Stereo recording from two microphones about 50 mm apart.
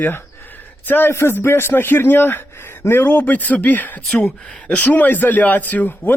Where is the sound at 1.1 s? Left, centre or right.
Left.